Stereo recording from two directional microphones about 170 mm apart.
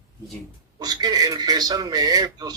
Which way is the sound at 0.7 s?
25° right (ahead or behind).